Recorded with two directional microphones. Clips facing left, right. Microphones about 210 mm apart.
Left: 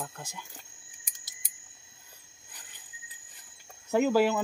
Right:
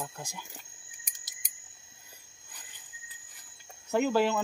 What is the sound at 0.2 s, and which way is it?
Speech, 10° right (ahead or behind).